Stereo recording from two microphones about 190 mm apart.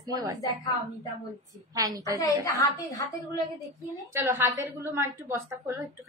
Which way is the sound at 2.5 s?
15° left (ahead or behind).